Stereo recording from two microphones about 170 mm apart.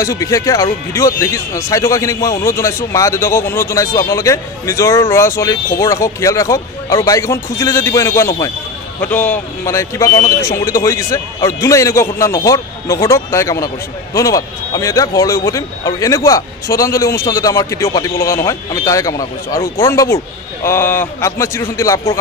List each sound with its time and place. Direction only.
0.0 s speech: 20° left (ahead or behind)